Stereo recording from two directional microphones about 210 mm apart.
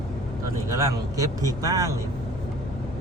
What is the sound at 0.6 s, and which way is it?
A man's voice, 15° right (ahead or behind).